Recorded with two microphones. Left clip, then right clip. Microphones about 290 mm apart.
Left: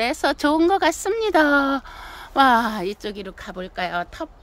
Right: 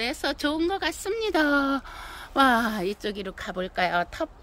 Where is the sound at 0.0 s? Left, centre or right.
Centre.